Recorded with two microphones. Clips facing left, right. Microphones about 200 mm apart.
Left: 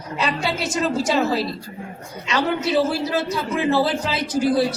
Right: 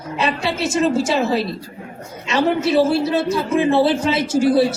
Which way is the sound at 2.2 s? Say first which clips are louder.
Right 4 dB; 25° right (ahead or behind).